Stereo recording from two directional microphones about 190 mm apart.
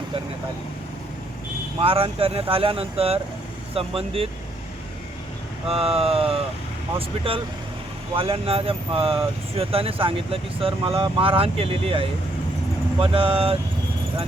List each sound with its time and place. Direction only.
1.8 s speech: 30° right (ahead or behind)
5.6 s speech: 30° right (ahead or behind)
8.1 s speech: 30° right (ahead or behind)